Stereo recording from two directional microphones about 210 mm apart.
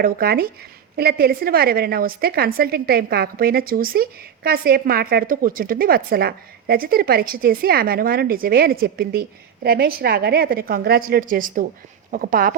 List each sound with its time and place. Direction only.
0.0 s a woman's voice: 45° right (ahead or behind)